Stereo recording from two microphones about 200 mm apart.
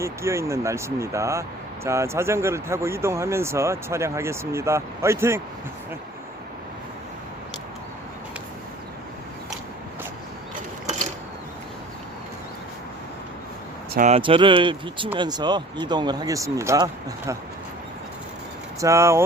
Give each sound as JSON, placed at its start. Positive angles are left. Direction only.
{"t": 0.0, "sound": "speech", "side_deg": -15}
{"t": 13.9, "sound": "speech", "side_deg": -40}
{"t": 14.2, "sound": "speech", "side_deg": -25}
{"t": 18.8, "sound": "speech", "side_deg": -15}